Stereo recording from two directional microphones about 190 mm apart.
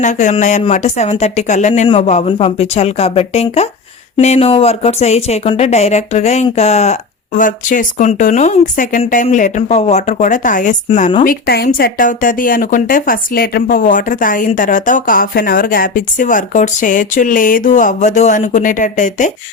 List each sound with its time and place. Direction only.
0.0 s speech: 40° left (ahead or behind)
11.2 s speech: 50° left (ahead or behind)